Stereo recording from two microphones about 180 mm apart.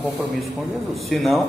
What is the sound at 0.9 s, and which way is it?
Speech, centre (ahead or behind).